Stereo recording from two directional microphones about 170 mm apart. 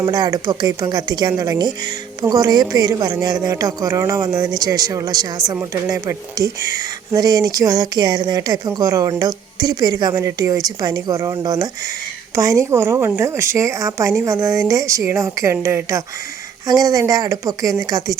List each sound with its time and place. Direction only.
0.0 s a woman's voice: 25° right (ahead or behind)